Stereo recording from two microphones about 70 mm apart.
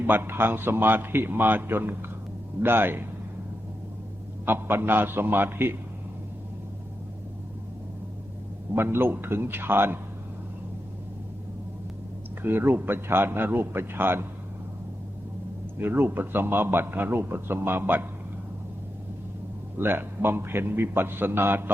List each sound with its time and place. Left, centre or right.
0.1 s a man's voice: right
4.4 s a man's voice: right
8.7 s a man's voice: right
12.4 s a man's voice: right
15.8 s a man's voice: right
19.8 s a man's voice: right